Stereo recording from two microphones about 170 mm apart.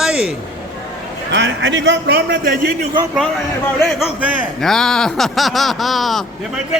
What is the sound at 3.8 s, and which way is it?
Speech, 5° right (ahead or behind).